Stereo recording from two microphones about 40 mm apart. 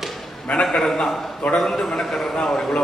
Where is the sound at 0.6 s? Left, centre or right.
Centre.